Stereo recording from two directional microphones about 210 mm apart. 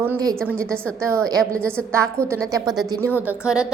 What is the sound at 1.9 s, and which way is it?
Speech, 10° right (ahead or behind).